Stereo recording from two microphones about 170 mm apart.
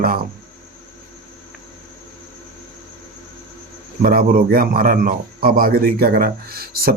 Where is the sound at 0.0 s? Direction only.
60° right (ahead or behind).